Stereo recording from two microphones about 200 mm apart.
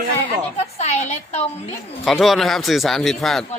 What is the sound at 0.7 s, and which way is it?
Speech, 35° left (ahead or behind).